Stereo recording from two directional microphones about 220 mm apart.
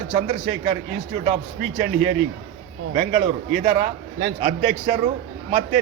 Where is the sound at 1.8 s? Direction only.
40° right (ahead or behind).